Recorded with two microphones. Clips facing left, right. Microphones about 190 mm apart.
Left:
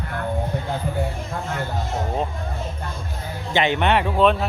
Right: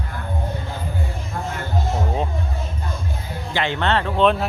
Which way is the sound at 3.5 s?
20° left (ahead or behind).